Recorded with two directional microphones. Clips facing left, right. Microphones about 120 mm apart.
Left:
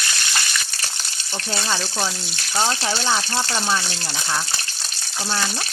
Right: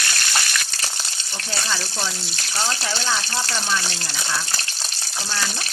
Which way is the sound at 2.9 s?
25° left (ahead or behind).